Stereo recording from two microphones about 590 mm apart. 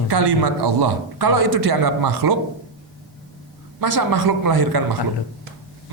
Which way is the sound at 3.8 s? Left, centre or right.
Right.